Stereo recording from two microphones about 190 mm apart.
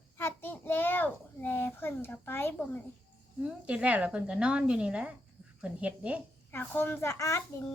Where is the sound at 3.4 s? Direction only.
5° right (ahead or behind).